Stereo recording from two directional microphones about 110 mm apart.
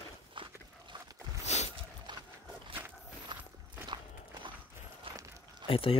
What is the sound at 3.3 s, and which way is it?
Walk, 40° right (ahead or behind).